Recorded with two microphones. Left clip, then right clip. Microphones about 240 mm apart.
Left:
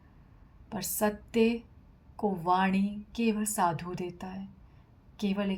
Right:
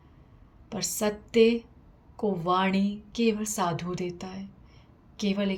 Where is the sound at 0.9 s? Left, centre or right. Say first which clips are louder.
Right 3 dB; left.